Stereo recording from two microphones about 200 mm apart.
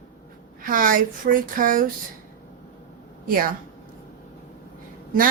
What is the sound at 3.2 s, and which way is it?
Speech, 45° right (ahead or behind).